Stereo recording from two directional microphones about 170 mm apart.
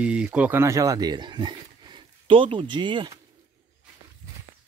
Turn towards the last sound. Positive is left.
turn(degrees=-25)  # may be behind; listen again after turning